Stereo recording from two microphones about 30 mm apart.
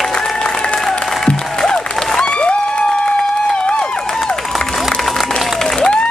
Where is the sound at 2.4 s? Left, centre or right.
Left.